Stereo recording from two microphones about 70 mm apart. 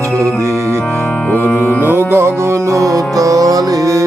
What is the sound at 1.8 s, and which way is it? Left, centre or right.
Music, right.